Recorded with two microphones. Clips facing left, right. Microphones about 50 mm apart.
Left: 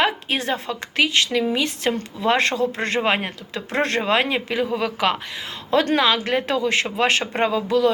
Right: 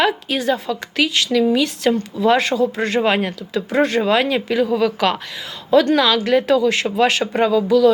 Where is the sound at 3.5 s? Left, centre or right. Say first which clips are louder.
Right 5 dB; left.